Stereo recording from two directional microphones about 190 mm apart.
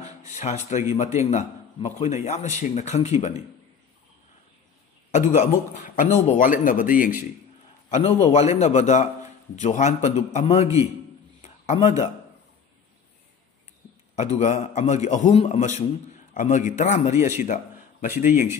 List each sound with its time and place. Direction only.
0.3 s a man's voice: 35° left (ahead or behind)
5.3 s speech: 40° left (ahead or behind)
7.9 s a man's voice: 35° left (ahead or behind)
11.4 s a sound: 35° left (ahead or behind)
14.1 s a man's voice: 35° left (ahead or behind)
18.3 s speech: 10° right (ahead or behind)